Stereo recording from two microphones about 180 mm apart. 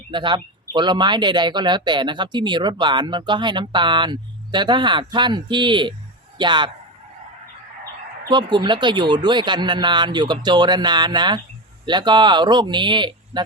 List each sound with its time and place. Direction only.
0.1 s speech: 25° right (ahead or behind)
8.3 s speech: 25° right (ahead or behind)